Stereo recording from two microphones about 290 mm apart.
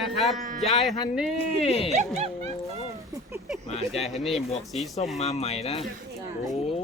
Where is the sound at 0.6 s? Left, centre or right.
Centre.